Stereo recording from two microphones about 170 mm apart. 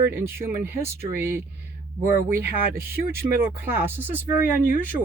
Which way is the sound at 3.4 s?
10° right (ahead or behind).